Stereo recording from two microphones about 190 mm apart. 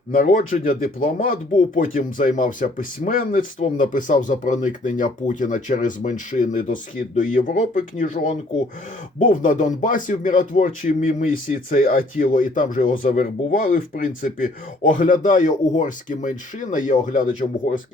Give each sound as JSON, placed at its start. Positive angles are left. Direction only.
{"t": 0.1, "sound": "speech", "side_deg": 45}